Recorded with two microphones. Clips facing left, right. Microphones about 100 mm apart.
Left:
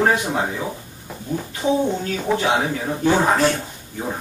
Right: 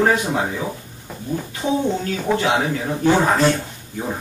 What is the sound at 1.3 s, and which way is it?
Speech, 10° left (ahead or behind).